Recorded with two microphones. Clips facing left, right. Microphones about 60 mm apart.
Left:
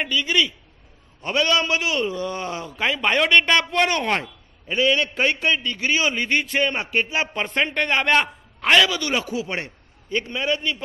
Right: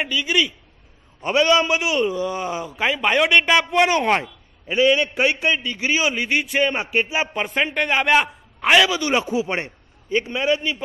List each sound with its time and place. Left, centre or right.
0.0 s a man's voice: centre
1.2 s a man's voice: centre